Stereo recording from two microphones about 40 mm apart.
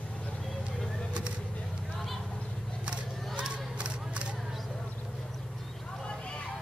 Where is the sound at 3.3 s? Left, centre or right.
Right.